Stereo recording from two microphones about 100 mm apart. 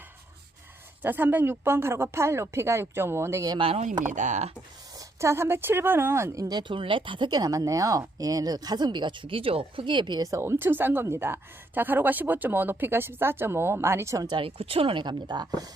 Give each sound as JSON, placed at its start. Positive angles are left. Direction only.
{"t": 1.0, "sound": "a woman's voice", "side_deg": -20}
{"t": 4.9, "sound": "a woman's voice", "side_deg": -30}
{"t": 6.5, "sound": "speech", "side_deg": -50}
{"t": 10.3, "sound": "a woman's voice", "side_deg": -25}
{"t": 14.3, "sound": "speech", "side_deg": -60}